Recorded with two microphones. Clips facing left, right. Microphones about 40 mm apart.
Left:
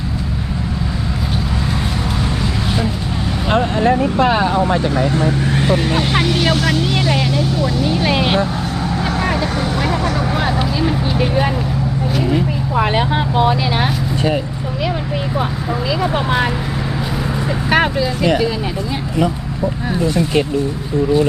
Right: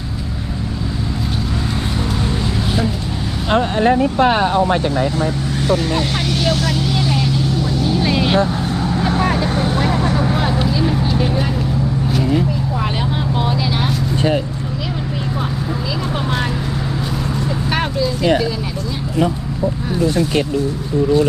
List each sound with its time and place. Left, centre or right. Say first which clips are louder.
3.8 s speech: right 1 dB; right
5.5 s speech: right 1 dB; left
6.5 s speech: left 2 dB; centre
7.2 s speech: left 2 dB; left
12.7 s speech: left 5 dB; left
16.1 s speech: left 3 dB; centre
17.7 s speech: left 5 dB; centre